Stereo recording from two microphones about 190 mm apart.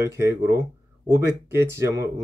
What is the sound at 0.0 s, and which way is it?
Speech, 15° right (ahead or behind).